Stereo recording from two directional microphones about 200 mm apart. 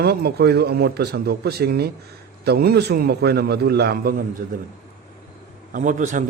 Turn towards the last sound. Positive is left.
turn(degrees=-40)  # may be behind; listen again after turning